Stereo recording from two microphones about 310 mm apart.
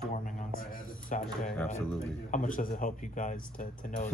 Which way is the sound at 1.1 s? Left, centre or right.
Left.